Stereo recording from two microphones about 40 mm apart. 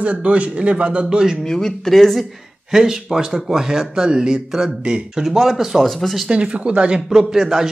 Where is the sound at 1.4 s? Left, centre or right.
Centre.